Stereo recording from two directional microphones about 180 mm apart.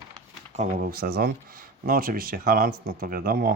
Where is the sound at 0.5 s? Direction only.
40° right (ahead or behind).